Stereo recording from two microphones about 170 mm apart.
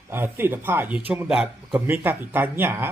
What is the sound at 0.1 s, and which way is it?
Speech, 15° right (ahead or behind).